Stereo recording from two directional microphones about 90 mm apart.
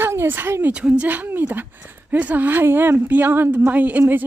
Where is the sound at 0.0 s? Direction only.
25° right (ahead or behind).